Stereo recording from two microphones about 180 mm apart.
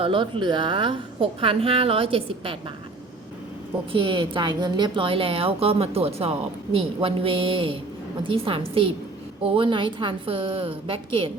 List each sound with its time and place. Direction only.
0.0 s a woman's voice: 30° right (ahead or behind)
3.9 s a woman's voice: 30° right (ahead or behind)